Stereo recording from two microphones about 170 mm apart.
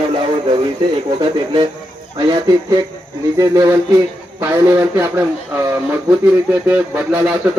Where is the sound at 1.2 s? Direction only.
25° right (ahead or behind).